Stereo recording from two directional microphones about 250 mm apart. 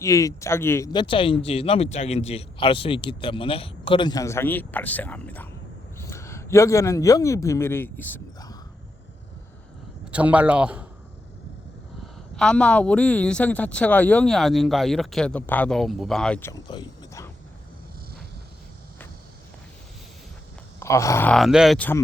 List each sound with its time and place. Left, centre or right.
0.0 s a man's voice: centre
10.1 s speech: centre
12.4 s speech: centre
20.7 s speech: centre